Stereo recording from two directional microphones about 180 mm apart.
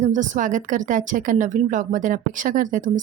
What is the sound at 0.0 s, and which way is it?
A woman's voice, 45° right (ahead or behind).